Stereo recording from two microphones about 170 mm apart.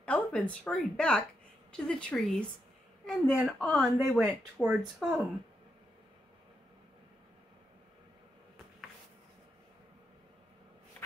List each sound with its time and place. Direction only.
0.0 s speech: 10° left (ahead or behind)